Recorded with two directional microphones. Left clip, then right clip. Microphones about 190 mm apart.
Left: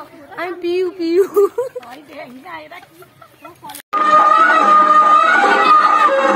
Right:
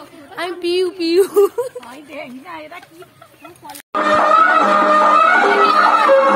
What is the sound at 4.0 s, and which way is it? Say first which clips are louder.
Music: left 2 dB; 25° right (ahead or behind).